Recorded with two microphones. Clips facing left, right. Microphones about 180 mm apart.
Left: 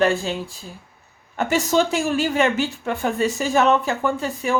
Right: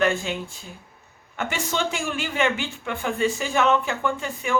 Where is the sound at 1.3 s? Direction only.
40° left (ahead or behind).